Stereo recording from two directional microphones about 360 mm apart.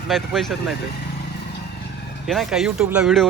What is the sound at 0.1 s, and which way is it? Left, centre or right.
Speech, centre.